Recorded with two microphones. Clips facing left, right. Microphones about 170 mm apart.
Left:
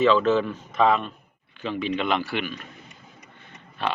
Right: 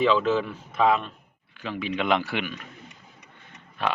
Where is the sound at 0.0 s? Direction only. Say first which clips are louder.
Left 3 dB; 10° right (ahead or behind).